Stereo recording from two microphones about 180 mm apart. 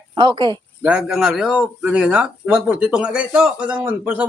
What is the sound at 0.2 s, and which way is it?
Speech, 25° right (ahead or behind).